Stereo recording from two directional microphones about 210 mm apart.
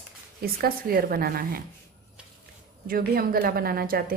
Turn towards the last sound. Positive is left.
turn(degrees=-45)  # may be behind; listen again after turning